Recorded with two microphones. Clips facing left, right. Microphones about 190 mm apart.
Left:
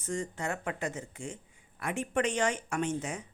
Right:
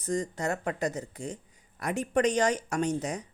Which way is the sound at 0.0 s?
35° right (ahead or behind).